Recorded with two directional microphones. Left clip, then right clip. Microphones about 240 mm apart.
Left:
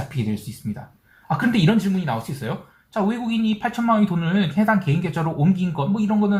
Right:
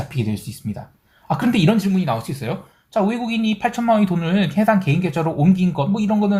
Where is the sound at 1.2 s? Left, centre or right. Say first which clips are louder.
Right 2 dB; right.